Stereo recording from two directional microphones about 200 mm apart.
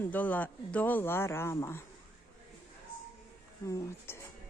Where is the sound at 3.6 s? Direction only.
15° left (ahead or behind).